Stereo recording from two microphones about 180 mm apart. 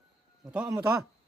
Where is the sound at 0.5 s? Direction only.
15° right (ahead or behind).